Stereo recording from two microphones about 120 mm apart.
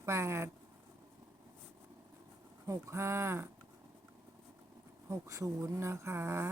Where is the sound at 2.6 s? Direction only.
25° right (ahead or behind).